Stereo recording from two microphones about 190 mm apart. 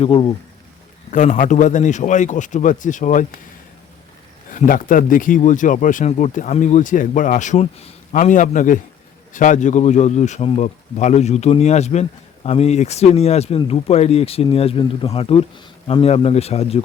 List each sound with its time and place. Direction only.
0.0 s speech: 30° left (ahead or behind)
1.1 s speech: 40° left (ahead or behind)
4.5 s speech: 45° left (ahead or behind)